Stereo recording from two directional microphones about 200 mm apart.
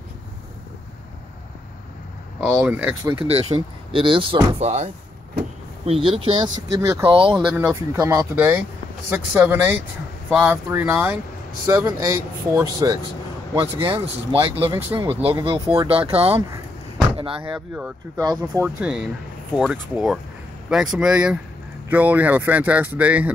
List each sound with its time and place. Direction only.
2.4 s speech: 5° right (ahead or behind)
3.2 s speech: 30° right (ahead or behind); by 7.1 s 15° right (ahead or behind)
7.1 s speech: 25° right (ahead or behind)
7.4 s speech: 10° right (ahead or behind); by 14.8 s 25° right (ahead or behind)
14.9 s speech: 15° right (ahead or behind)
15.4 s speech: 30° right (ahead or behind)
17.5 s speech: 5° right (ahead or behind)